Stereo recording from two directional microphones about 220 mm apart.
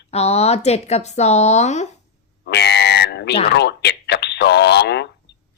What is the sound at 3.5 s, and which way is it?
Speech, 50° left (ahead or behind).